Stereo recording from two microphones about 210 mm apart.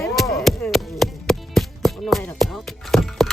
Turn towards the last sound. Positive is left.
turn(degrees=0)  # may be behind; listen again after turning